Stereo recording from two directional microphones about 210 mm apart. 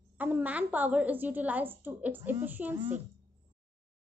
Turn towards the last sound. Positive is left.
turn(degrees=-10)  # may be behind; listen again after turning